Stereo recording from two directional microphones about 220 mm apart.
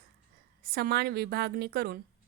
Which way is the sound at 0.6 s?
45° right (ahead or behind).